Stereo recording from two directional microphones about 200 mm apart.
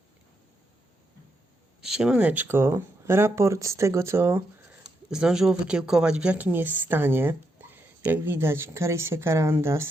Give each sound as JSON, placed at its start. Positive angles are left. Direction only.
{"t": 1.8, "sound": "speech", "side_deg": -5}